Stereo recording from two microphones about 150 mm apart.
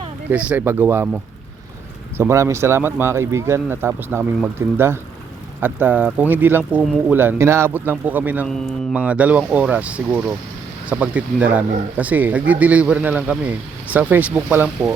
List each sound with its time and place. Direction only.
0.3 s speech: 10° right (ahead or behind)
2.1 s speech: 20° right (ahead or behind)
8.4 s speech: 5° left (ahead or behind)
9.0 s speech: 10° right (ahead or behind)